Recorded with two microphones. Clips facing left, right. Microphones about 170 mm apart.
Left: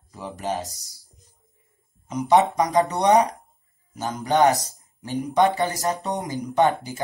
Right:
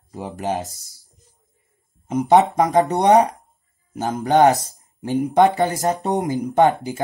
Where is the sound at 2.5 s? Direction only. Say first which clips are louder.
Right 4 dB; 55° right (ahead or behind).